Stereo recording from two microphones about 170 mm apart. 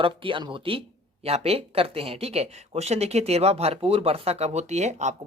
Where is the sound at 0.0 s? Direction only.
30° right (ahead or behind).